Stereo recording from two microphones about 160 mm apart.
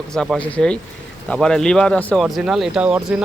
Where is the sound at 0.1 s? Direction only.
5° left (ahead or behind).